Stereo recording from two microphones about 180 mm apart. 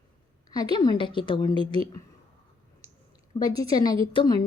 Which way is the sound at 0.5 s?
20° left (ahead or behind).